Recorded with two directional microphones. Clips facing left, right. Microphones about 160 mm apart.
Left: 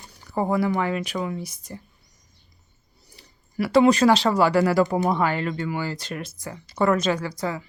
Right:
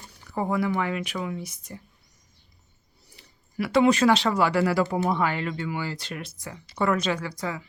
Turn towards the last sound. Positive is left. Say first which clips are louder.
# left 3 dB
turn(degrees=35)  # may be behind; listen again after turning